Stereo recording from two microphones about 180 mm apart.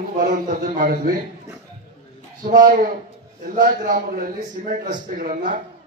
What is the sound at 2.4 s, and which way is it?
A man's voice, 50° right (ahead or behind).